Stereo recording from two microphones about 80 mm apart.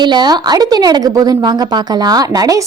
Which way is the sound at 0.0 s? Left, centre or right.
Right.